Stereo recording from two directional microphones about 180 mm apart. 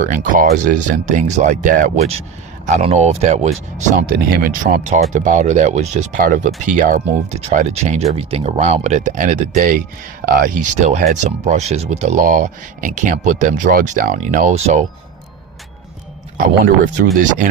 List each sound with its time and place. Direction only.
0.0 s speech: 50° right (ahead or behind)
3.9 s speech: 55° right (ahead or behind)
16.4 s speech: 45° right (ahead or behind)